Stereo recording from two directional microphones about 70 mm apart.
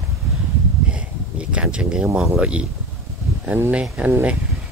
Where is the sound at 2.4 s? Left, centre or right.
Centre.